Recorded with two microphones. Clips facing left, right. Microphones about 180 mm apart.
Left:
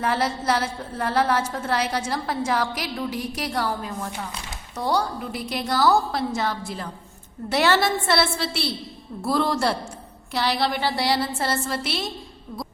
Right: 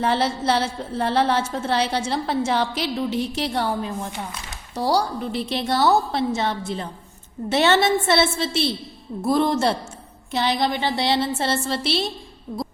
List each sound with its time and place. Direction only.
0.0 s a woman's voice: 30° right (ahead or behind)